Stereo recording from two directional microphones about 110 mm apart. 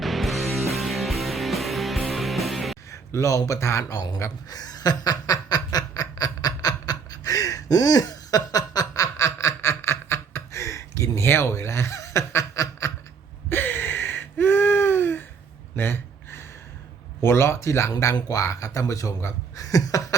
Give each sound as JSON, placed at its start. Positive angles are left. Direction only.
{"t": 0.0, "sound": "music", "side_deg": 0}
{"t": 2.9, "sound": "a sound", "side_deg": 30}
{"t": 17.9, "sound": "speech", "side_deg": 30}